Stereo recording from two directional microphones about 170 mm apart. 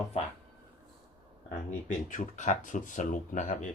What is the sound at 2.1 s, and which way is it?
Speech, 45° left (ahead or behind).